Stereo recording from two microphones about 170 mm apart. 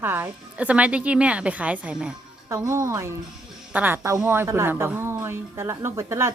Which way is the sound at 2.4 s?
20° right (ahead or behind).